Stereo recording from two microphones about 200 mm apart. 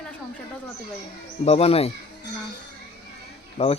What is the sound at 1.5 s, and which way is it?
Speech, 30° left (ahead or behind).